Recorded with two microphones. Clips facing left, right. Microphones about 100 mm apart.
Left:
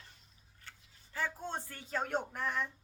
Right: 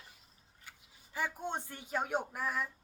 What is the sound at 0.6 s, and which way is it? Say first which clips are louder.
A woman's voice: even; 15° right (ahead or behind).